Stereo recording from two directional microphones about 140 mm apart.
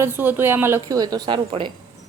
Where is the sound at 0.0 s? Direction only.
15° right (ahead or behind).